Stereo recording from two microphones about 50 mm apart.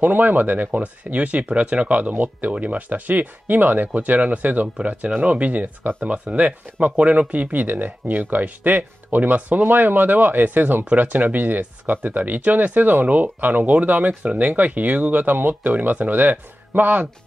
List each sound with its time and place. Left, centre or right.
0.0 s speech: right
0.7 s speech: right